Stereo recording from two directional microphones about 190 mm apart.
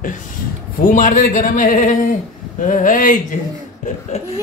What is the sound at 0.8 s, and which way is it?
A man's voice, 40° left (ahead or behind).